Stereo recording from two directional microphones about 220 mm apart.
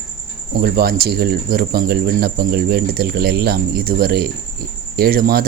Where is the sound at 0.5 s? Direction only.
45° right (ahead or behind).